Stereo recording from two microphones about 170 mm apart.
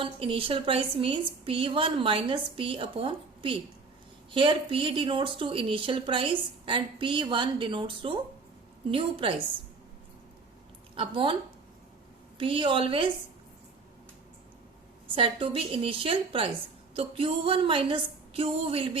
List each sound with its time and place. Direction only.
0.0 s a woman's voice: 30° right (ahead or behind)
10.9 s speech: 30° right (ahead or behind)
12.4 s a woman's voice: 30° right (ahead or behind)
15.1 s a woman's voice: 30° right (ahead or behind)